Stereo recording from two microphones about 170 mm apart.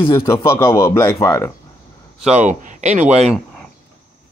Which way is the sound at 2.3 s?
45° right (ahead or behind).